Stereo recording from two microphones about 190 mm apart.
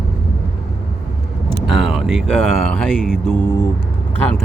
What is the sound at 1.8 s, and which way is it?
Speech, centre (ahead or behind).